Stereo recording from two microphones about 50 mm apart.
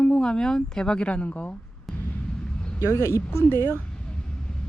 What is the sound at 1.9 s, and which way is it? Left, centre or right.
Speech, centre.